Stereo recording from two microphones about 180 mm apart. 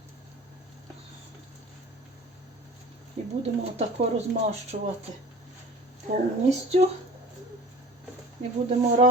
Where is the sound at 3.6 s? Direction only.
35° right (ahead or behind).